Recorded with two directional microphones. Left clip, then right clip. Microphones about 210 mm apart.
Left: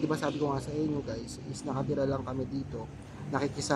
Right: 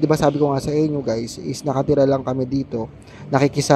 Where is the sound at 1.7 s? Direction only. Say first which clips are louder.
Right 15 dB; 30° right (ahead or behind).